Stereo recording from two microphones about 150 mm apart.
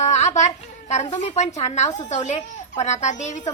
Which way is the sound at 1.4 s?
50° left (ahead or behind).